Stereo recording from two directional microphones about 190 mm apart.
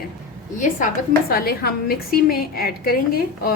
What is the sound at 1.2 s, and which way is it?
A woman's voice, 55° left (ahead or behind).